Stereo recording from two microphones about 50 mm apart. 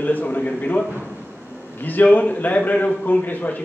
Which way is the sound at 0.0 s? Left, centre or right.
Left.